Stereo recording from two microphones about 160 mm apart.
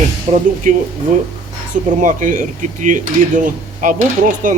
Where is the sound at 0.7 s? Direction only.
55° right (ahead or behind).